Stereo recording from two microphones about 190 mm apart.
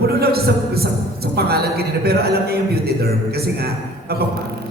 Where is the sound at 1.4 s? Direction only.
55° right (ahead or behind).